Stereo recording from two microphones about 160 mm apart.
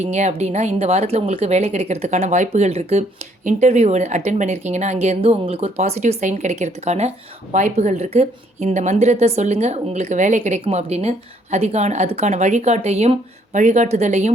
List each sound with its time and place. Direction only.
0.0 s a woman's voice: 45° right (ahead or behind)